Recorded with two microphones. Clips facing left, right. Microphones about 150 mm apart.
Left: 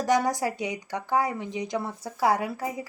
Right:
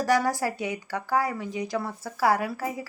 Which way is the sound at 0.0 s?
20° left (ahead or behind).